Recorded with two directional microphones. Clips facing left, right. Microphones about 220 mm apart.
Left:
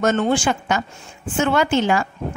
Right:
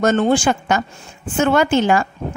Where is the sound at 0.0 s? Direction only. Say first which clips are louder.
Right 3 dB; 35° right (ahead or behind).